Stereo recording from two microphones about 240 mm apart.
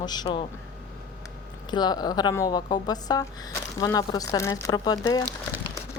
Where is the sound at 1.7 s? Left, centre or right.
Centre.